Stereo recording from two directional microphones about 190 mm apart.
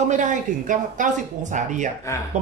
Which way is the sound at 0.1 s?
40° right (ahead or behind).